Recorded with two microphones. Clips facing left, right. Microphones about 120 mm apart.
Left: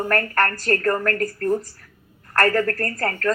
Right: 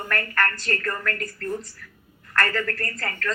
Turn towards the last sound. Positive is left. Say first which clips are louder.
# left 7 dB
turn(degrees=40)  # may be behind; listen again after turning